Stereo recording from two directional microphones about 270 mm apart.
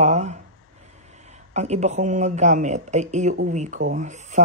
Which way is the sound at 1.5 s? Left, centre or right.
Right.